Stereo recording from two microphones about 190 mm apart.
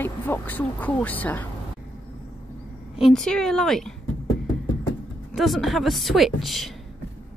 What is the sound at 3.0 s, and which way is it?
Speech, centre (ahead or behind).